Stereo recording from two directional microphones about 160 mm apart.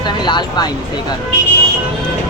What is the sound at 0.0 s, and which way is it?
Speech, 30° left (ahead or behind).